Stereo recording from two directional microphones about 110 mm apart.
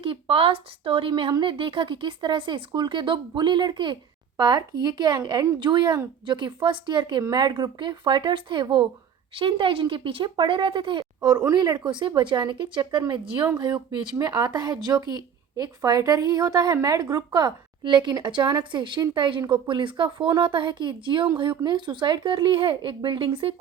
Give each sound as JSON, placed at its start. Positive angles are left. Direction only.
{"t": 0.0, "sound": "a woman's voice", "side_deg": -55}